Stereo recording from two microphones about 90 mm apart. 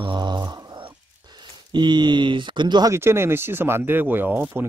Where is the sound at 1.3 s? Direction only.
55° right (ahead or behind).